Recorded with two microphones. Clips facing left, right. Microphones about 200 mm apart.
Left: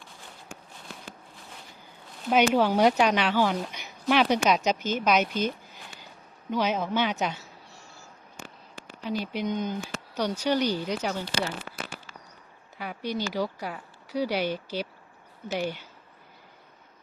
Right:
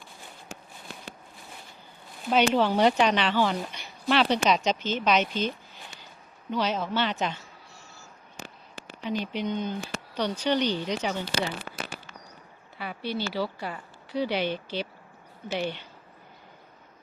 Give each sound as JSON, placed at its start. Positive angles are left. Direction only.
{"t": 0.5, "sound": "walk", "side_deg": -80}
{"t": 2.5, "sound": "speech", "side_deg": 10}
{"t": 3.7, "sound": "a sound", "side_deg": 10}
{"t": 4.4, "sound": "speech", "side_deg": 10}
{"t": 9.0, "sound": "speech", "side_deg": 10}
{"t": 12.8, "sound": "speech", "side_deg": 10}